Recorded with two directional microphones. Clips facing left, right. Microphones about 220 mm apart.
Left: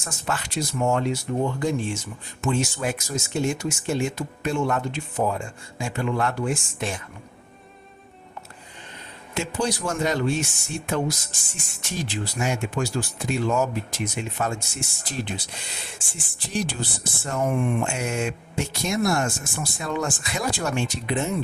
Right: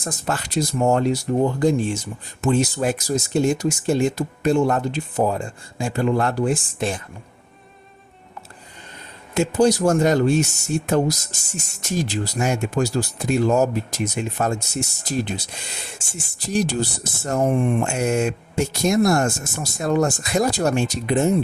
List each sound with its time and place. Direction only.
0.0 s speech: 35° right (ahead or behind)
9.3 s speech: 45° right (ahead or behind)